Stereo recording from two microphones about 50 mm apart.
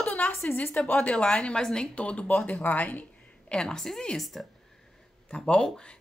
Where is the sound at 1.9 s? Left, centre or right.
Left.